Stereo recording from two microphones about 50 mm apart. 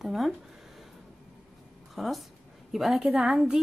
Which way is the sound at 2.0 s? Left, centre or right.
Centre.